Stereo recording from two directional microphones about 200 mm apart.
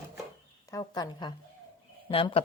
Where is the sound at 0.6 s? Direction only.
20° left (ahead or behind).